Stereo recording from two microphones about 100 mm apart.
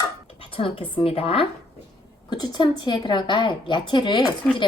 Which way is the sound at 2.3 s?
45° left (ahead or behind).